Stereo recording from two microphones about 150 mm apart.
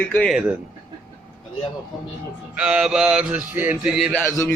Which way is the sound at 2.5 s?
5° right (ahead or behind).